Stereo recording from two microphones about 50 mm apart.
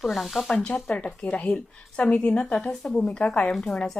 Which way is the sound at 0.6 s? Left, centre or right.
Centre.